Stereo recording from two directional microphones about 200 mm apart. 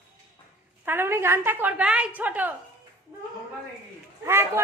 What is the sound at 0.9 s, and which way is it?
A woman's voice, 10° right (ahead or behind).